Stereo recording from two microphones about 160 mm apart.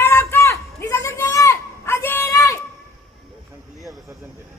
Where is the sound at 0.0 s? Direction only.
15° left (ahead or behind).